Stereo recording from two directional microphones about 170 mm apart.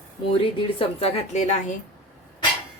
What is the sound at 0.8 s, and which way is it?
Speech, 35° left (ahead or behind).